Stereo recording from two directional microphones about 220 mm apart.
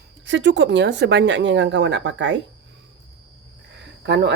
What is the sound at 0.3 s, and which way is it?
Speech, 55° right (ahead or behind).